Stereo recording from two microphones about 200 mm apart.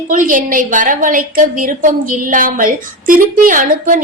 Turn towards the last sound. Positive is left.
turn(degrees=-40)  # may be behind; listen again after turning